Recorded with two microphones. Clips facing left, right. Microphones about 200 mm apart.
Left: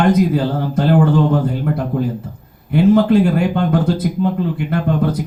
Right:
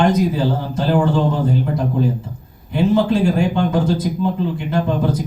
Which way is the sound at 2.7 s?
55° left (ahead or behind).